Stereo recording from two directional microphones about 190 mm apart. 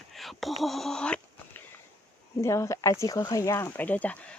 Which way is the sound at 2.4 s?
15° left (ahead or behind).